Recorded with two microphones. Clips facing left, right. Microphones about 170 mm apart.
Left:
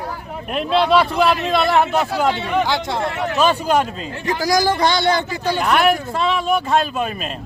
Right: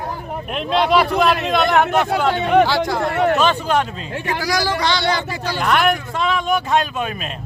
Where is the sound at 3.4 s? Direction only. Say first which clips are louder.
Left 1 dB; 10° left (ahead or behind).